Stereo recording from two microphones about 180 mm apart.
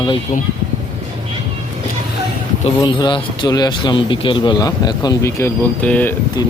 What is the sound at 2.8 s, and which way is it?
Speech, 25° left (ahead or behind).